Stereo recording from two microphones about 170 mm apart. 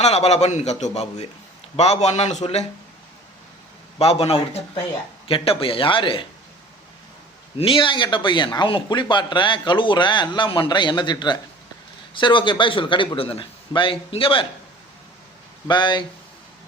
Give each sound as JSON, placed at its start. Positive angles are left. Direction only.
{"t": 0.0, "sound": "a man's voice", "side_deg": 40}
{"t": 3.9, "sound": "a man's voice", "side_deg": 35}
{"t": 7.6, "sound": "speech", "side_deg": 30}
{"t": 15.6, "sound": "speech", "side_deg": 25}